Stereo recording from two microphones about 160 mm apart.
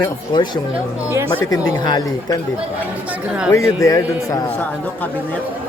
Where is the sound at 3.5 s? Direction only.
20° left (ahead or behind).